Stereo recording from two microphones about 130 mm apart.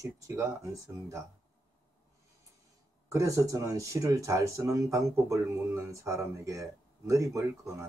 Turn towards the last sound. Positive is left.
turn(degrees=-20)  # may be behind; listen again after turning